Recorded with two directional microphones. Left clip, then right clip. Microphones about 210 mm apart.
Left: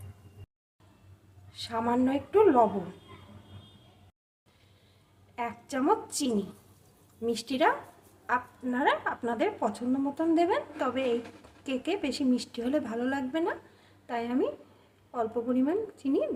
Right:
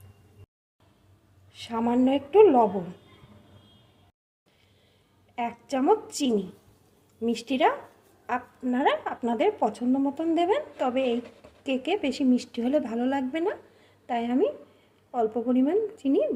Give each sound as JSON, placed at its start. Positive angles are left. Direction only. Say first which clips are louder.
{"t": 1.5, "sound": "a woman's voice", "louder": "right 2 dB", "side_deg": -20}
{"t": 5.3, "sound": "a woman's voice", "louder": "right 4 dB", "side_deg": -25}